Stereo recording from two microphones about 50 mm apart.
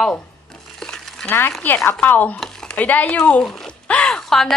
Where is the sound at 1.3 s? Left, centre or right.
Left.